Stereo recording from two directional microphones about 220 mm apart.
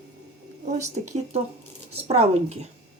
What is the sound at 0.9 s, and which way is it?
Speech, 30° right (ahead or behind).